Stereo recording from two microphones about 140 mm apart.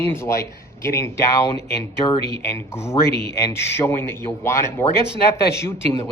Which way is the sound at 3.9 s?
15° left (ahead or behind).